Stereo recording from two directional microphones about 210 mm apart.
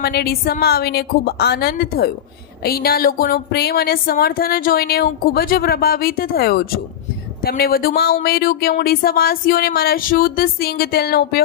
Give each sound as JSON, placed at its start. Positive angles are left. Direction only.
{"t": 0.0, "sound": "speech", "side_deg": 50}